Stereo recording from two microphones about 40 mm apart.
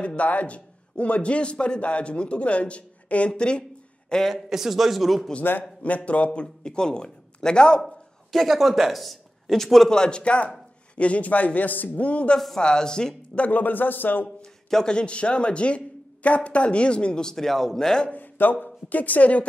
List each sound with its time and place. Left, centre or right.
0.0 s a man's voice: left; by 4.3 s centre
4.5 s speech: centre
5.6 s a man's voice: left
6.4 s speech: centre
7.8 s a sound: centre
8.5 s speech: centre
9.8 s a man's voice: centre; by 12.0 s left
12.0 s a man's voice: left
12.5 s speech: centre
13.5 s a man's voice: left
14.9 s speech: left
18.1 s speech: left